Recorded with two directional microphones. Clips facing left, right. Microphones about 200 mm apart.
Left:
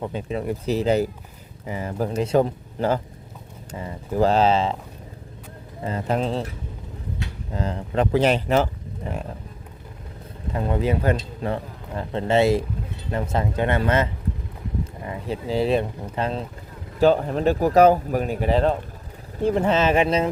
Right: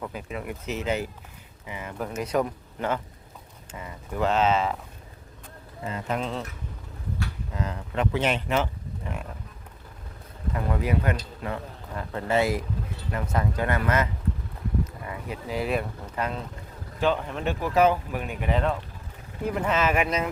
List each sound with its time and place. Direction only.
0.0 s speech: 30° left (ahead or behind)
5.8 s speech: 35° left (ahead or behind)
7.5 s speech: 30° left (ahead or behind)
10.5 s speech: 25° left (ahead or behind)